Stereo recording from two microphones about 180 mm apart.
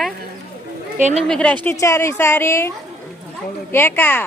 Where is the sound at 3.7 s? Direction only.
10° left (ahead or behind).